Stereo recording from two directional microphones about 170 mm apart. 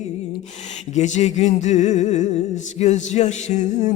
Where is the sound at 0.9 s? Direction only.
45° left (ahead or behind).